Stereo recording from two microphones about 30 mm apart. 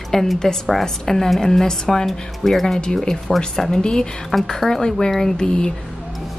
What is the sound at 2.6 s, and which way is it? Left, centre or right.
Speech, centre.